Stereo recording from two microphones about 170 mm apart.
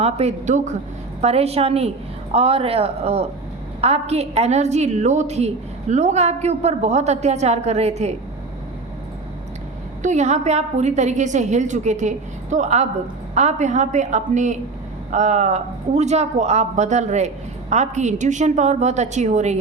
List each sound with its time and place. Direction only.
0.0 s a woman's voice: 40° right (ahead or behind)
10.0 s speech: 45° right (ahead or behind)